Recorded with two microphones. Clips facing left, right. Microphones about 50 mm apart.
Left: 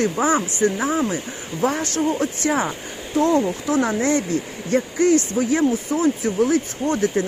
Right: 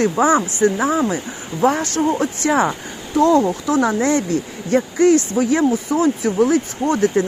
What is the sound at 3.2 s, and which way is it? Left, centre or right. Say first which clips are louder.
Speech: right 4 dB; right.